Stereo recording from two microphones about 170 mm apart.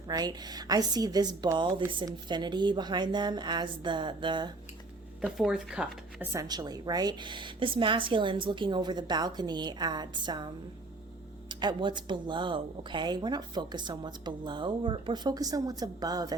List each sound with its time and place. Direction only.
0.1 s speech: 25° right (ahead or behind)
5.2 s speech: 5° right (ahead or behind)
6.3 s speech: 25° right (ahead or behind)